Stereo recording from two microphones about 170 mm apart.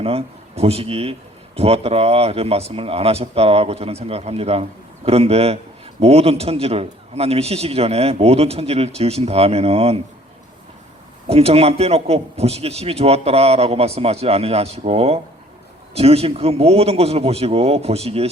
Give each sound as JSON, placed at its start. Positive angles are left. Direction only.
{"t": 0.0, "sound": "a man's voice", "side_deg": -35}
{"t": 11.3, "sound": "a man's voice", "side_deg": -35}